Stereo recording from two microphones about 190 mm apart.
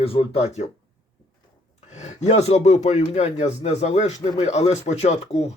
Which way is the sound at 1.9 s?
35° left (ahead or behind).